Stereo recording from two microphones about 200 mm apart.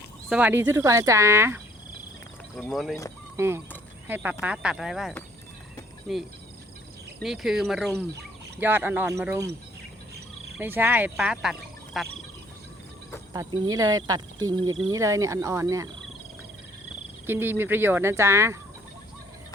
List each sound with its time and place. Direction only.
0.3 s speech: 5° right (ahead or behind)
2.6 s speech: centre (ahead or behind)
3.3 s speech: 10° right (ahead or behind)
10.6 s speech: 10° right (ahead or behind)
13.3 s speech: 15° right (ahead or behind)
17.2 s speech: 10° right (ahead or behind)